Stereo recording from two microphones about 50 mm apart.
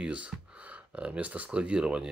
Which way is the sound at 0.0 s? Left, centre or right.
Right.